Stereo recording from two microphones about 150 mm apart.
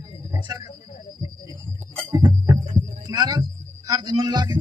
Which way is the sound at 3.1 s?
30° right (ahead or behind).